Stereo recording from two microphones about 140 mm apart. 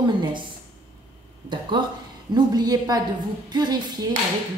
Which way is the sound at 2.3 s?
30° right (ahead or behind).